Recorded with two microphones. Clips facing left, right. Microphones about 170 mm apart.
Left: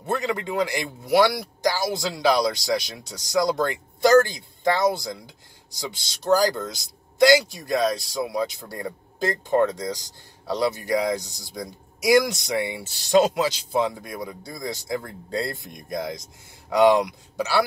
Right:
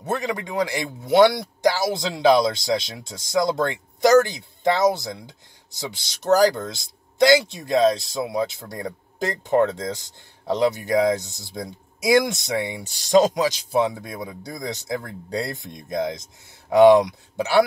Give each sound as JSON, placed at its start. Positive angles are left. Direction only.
{"t": 1.0, "sound": "speech", "side_deg": -25}